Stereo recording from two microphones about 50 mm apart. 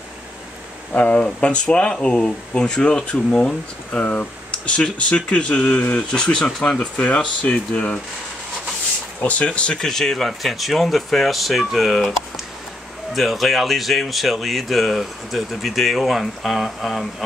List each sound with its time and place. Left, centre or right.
0.9 s speech: left
4.0 s speech: left
9.2 s speech: left
9.8 s speech: centre
13.1 s speech: centre